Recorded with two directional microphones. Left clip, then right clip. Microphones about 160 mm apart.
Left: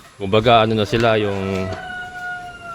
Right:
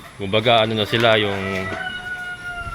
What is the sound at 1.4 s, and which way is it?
Speech, 55° left (ahead or behind).